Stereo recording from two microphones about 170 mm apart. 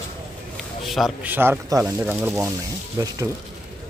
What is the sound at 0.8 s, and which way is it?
Speech, centre (ahead or behind).